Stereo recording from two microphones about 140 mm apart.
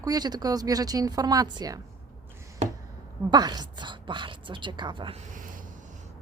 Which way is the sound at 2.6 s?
55° right (ahead or behind).